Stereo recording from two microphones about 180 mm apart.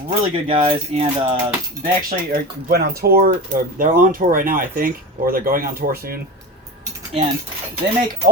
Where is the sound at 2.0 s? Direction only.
55° right (ahead or behind).